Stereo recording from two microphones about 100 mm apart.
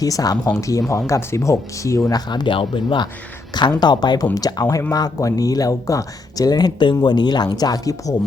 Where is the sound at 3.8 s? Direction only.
45° left (ahead or behind).